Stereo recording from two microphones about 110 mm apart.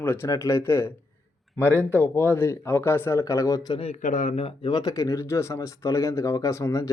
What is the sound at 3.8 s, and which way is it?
Speech, 70° left (ahead or behind).